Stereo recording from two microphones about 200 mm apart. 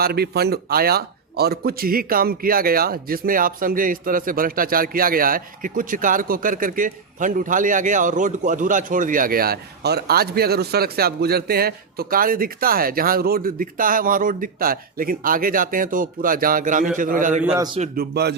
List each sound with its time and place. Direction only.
0.0 s speech: 50° right (ahead or behind)
17.4 s a man's voice: 10° right (ahead or behind)
17.9 s speech: 55° right (ahead or behind)